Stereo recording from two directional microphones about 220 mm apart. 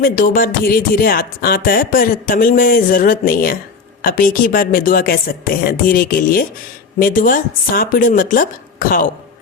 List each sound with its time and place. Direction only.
0.0 s speech: 40° left (ahead or behind)